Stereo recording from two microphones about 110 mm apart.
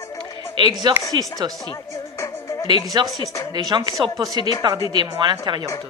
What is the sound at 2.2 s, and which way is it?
Music, 25° left (ahead or behind).